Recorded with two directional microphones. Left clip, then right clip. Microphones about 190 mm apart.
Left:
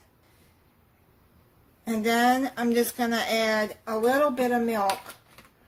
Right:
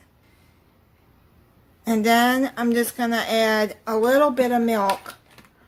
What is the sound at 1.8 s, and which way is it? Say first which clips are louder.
Speech: right 5 dB; 40° right (ahead or behind).